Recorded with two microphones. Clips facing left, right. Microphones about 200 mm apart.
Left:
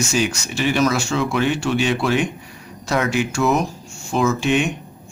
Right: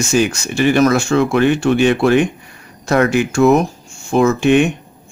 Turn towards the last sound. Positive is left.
turn(degrees=-55)  # may be behind; listen again after turning